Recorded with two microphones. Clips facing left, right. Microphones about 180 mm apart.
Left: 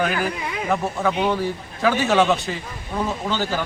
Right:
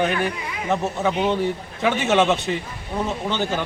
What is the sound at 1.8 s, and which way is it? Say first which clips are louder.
A man's voice: left 1 dB; 20° right (ahead or behind).